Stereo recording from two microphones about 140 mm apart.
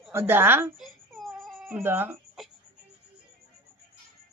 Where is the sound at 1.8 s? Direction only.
15° right (ahead or behind).